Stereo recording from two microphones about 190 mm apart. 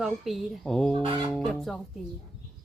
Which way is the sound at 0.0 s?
Centre (ahead or behind).